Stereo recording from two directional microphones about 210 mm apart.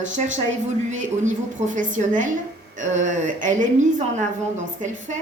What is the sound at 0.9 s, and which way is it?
A woman's voice, 35° right (ahead or behind).